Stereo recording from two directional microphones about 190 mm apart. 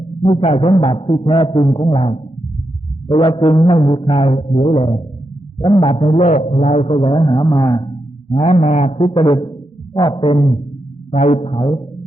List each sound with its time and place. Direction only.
0.3 s a man's voice: 30° left (ahead or behind)
11.1 s a man's voice: 35° left (ahead or behind)